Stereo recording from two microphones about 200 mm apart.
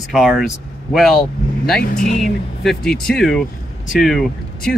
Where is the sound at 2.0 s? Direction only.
40° left (ahead or behind).